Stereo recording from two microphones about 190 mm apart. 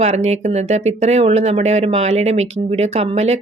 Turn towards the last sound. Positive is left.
turn(degrees=-35)  # may be behind; listen again after turning